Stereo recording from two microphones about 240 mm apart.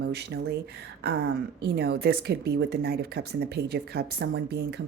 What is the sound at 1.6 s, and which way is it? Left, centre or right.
A woman's voice, right.